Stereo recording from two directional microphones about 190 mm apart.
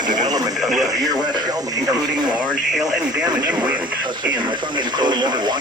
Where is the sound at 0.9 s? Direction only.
20° right (ahead or behind).